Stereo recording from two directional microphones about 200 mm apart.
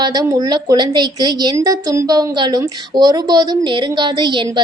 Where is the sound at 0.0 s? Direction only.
20° right (ahead or behind).